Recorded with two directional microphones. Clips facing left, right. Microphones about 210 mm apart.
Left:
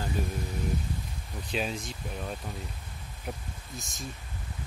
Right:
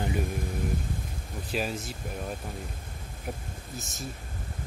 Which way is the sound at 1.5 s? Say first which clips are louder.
Right 1 dB; 5° right (ahead or behind).